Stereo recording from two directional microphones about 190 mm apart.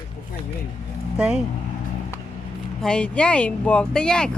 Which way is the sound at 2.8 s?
5° left (ahead or behind).